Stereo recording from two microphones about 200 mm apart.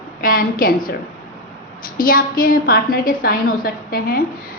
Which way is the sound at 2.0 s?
45° left (ahead or behind).